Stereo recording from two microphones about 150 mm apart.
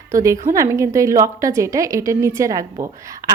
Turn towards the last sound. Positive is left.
turn(degrees=-20)  # may be behind; listen again after turning